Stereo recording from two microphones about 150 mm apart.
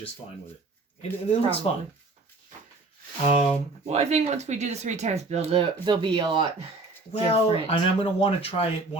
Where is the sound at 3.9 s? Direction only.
50° right (ahead or behind).